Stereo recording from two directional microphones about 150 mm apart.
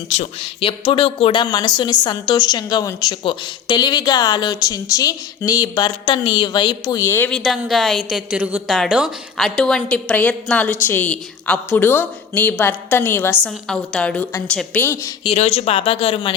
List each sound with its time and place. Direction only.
0.1 s speech: 45° left (ahead or behind)
0.9 s a woman's voice: 35° left (ahead or behind)
7.3 s a woman's voice: 5° left (ahead or behind)
15.2 s speech: 40° left (ahead or behind)